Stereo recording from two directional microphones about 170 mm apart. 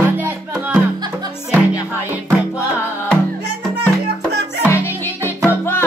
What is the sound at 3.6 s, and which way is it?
Music, centre (ahead or behind).